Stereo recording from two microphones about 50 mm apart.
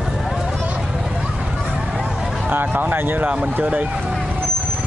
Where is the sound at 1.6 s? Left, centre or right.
Centre.